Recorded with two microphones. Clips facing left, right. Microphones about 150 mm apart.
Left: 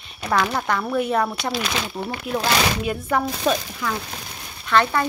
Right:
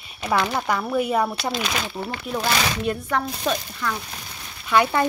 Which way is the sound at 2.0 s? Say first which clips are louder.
Left 3 dB; 15° left (ahead or behind).